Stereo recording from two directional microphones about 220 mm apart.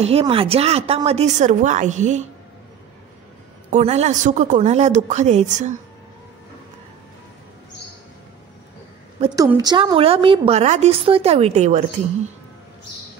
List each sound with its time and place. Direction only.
0.0 s a woman's voice: 25° right (ahead or behind)
3.7 s speech: 30° right (ahead or behind)
9.2 s a woman's voice: 15° right (ahead or behind); by 11.8 s 30° right (ahead or behind)